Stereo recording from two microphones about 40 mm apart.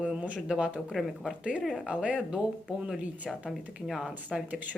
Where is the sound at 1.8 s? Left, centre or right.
Right.